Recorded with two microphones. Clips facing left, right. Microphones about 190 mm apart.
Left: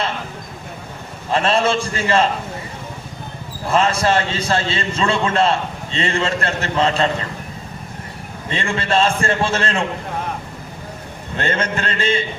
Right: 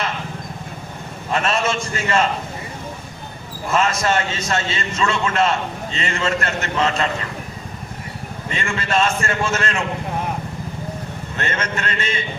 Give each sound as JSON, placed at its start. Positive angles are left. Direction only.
{"t": 1.3, "sound": "a man's voice", "side_deg": 30}
{"t": 3.7, "sound": "a man's voice", "side_deg": 30}
{"t": 8.4, "sound": "a man's voice", "side_deg": 30}
{"t": 11.3, "sound": "a man's voice", "side_deg": 30}